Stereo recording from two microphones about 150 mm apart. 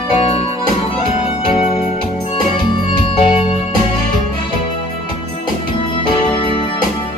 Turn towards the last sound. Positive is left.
turn(degrees=35)  # may be behind; listen again after turning